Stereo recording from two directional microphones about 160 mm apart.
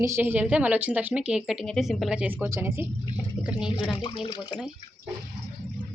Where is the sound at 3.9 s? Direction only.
30° left (ahead or behind).